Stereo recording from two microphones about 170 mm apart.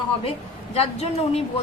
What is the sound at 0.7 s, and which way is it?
Speech, 35° left (ahead or behind).